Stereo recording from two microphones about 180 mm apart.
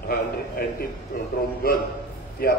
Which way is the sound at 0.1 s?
55° left (ahead or behind).